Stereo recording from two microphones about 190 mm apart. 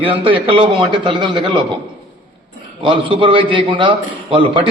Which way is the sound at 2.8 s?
25° right (ahead or behind).